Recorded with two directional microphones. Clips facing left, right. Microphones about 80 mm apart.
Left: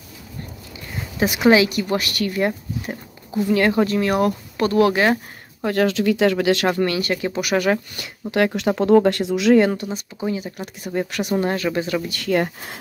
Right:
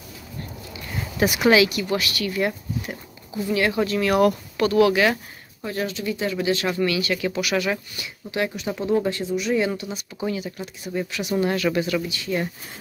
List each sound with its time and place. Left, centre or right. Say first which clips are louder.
1.4 s speech: left 3 dB; left
5.6 s speech: left 8 dB; left
6.7 s speech: left 2 dB; left
9.6 s speech: left 6 dB; left
11.3 s speech: even; left
12.1 s speech: left 6 dB; left